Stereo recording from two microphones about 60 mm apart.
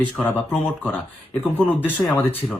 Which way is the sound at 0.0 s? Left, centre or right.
Left.